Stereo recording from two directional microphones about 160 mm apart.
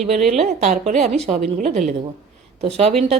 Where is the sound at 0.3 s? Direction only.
45° right (ahead or behind).